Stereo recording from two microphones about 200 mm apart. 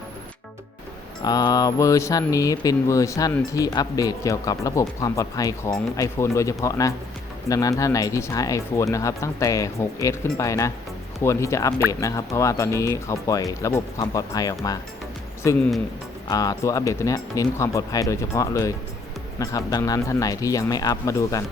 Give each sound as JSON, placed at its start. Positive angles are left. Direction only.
{"t": 1.2, "sound": "speech", "side_deg": 20}